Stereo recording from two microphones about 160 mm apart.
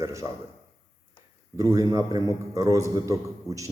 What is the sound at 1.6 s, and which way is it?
A man's voice, 20° right (ahead or behind).